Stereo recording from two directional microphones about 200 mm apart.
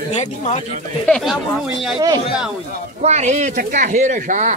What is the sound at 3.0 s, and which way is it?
Speech, 35° right (ahead or behind).